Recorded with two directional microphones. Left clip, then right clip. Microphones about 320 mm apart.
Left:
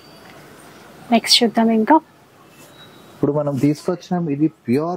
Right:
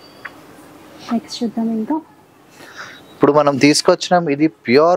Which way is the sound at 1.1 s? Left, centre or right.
Centre.